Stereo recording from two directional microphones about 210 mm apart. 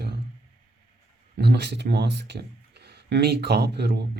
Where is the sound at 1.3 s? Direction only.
55° right (ahead or behind).